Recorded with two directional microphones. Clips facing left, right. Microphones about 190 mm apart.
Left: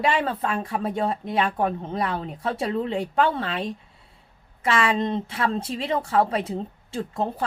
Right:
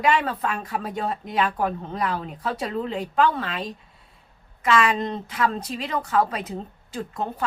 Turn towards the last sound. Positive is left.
turn(degrees=30)  # may be behind; listen again after turning